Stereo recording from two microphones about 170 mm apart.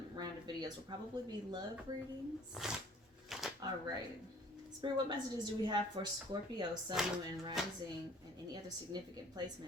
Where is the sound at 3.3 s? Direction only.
Centre (ahead or behind).